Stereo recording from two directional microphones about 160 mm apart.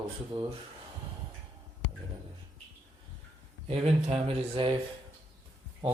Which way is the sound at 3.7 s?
40° right (ahead or behind).